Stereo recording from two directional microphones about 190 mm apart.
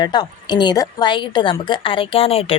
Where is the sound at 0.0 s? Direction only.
20° left (ahead or behind).